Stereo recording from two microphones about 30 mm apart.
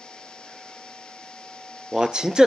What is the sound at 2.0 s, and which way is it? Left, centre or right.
Speech, right.